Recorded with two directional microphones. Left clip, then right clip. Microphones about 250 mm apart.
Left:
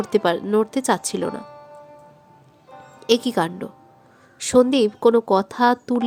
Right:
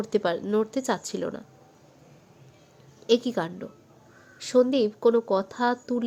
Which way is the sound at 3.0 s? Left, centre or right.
Centre.